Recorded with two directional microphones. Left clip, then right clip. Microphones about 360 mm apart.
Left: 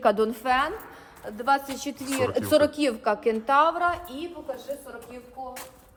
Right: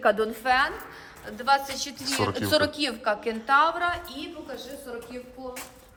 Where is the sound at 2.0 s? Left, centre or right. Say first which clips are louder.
Left 2 dB; centre.